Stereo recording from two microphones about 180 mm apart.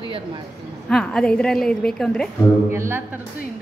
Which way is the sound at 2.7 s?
15° right (ahead or behind).